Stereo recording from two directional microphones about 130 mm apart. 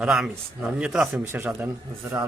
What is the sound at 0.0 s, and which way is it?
Speech, 5° right (ahead or behind).